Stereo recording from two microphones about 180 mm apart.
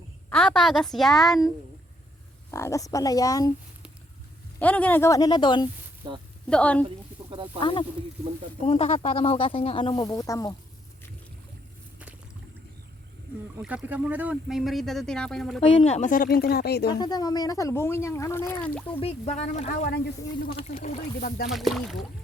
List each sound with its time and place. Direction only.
0.3 s speech: 5° left (ahead or behind)
2.5 s speech: 15° left (ahead or behind)
4.6 s speech: 10° left (ahead or behind); by 5.6 s 25° left (ahead or behind)
6.5 s speech: 5° left (ahead or behind)
7.3 s speech: 30° right (ahead or behind)
7.6 s speech: 25° left (ahead or behind)
13.6 s speech: 5° right (ahead or behind)
15.7 s speech: 35° left (ahead or behind); by 16.9 s 65° left (ahead or behind)
16.9 s speech: 20° left (ahead or behind)
18.9 s speech: 30° left (ahead or behind)
21.2 s speech: 55° left (ahead or behind)
21.5 s speech: centre (ahead or behind)